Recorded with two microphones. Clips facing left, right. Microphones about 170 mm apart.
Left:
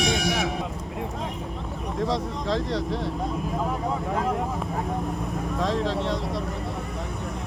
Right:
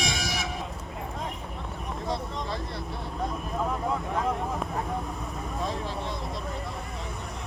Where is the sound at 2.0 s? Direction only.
90° left.